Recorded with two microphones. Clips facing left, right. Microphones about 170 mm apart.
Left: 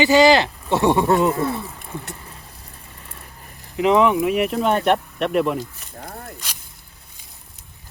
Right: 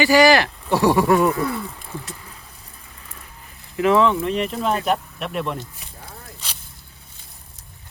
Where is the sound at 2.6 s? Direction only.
35° left (ahead or behind).